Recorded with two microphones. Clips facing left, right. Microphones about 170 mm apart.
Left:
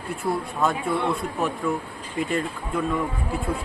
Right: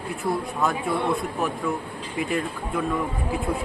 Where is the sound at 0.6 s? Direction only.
Centre (ahead or behind).